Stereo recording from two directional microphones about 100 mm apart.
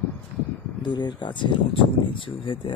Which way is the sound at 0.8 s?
45° left (ahead or behind).